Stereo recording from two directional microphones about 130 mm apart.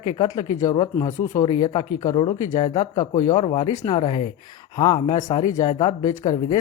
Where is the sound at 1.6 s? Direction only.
35° left (ahead or behind).